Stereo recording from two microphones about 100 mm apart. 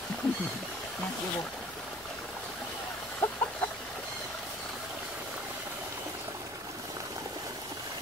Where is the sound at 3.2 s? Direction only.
20° left (ahead or behind).